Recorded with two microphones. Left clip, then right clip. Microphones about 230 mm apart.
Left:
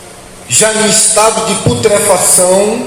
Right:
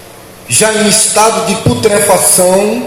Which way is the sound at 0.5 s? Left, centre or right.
Right.